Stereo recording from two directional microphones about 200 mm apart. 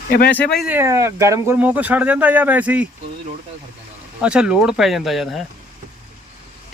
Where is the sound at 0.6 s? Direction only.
10° right (ahead or behind).